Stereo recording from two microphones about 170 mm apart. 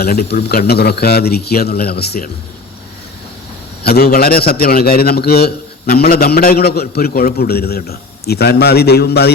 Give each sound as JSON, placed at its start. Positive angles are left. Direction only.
{"t": 0.0, "sound": "a man's voice", "side_deg": 65}
{"t": 3.8, "sound": "a man's voice", "side_deg": 65}